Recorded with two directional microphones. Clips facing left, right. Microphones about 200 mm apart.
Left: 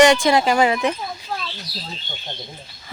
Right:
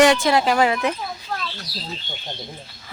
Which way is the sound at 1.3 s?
10° left (ahead or behind).